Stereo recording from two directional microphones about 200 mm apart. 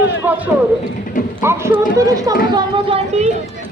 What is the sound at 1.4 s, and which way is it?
Speech, 10° right (ahead or behind).